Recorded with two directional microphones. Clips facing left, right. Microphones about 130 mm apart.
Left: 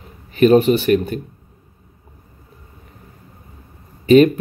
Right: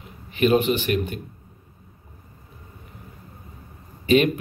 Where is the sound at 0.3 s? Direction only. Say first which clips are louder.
Left 7 dB; 40° left (ahead or behind).